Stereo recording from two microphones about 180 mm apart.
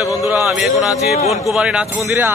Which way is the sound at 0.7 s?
Centre (ahead or behind).